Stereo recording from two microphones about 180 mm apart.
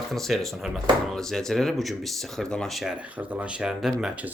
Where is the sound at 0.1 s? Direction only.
Centre (ahead or behind).